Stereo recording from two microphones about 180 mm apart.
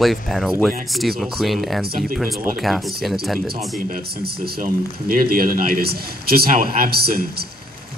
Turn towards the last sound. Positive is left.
turn(degrees=-60)  # may be behind; listen again after turning